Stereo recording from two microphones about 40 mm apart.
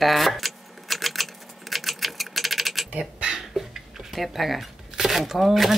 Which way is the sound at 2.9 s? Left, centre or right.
Right.